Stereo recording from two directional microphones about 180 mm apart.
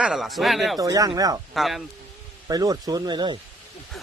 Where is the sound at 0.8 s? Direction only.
20° right (ahead or behind).